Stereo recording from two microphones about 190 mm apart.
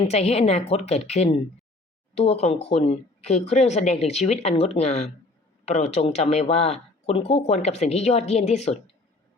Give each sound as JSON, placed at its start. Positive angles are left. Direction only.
{"t": 0.0, "sound": "speech", "side_deg": 35}